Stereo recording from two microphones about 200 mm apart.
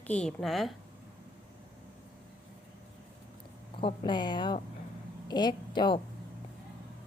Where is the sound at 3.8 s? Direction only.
25° left (ahead or behind).